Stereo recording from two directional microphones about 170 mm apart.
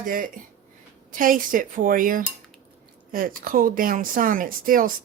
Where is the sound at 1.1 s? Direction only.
55° right (ahead or behind).